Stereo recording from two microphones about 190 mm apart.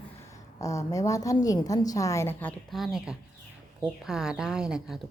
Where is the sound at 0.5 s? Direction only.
15° left (ahead or behind); by 5.0 s 5° right (ahead or behind).